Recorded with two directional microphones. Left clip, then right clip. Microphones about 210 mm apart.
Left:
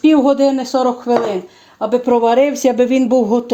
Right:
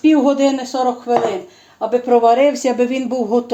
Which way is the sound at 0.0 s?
50° left (ahead or behind).